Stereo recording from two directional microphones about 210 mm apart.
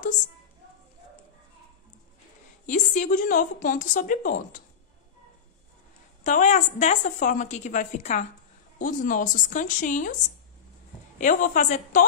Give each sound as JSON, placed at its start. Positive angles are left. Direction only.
{"t": 2.6, "sound": "a woman's voice", "side_deg": 35}
{"t": 6.2, "sound": "a woman's voice", "side_deg": 35}
{"t": 11.1, "sound": "a woman's voice", "side_deg": 40}